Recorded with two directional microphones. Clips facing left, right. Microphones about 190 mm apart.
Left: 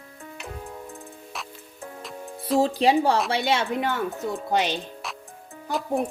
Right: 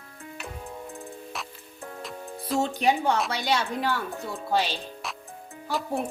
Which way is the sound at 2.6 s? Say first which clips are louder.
Left 4 dB; 30° left (ahead or behind).